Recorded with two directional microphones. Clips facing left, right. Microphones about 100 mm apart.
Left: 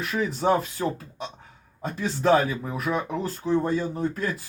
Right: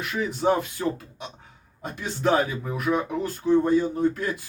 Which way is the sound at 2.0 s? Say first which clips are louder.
Left 2 dB; 30° left (ahead or behind).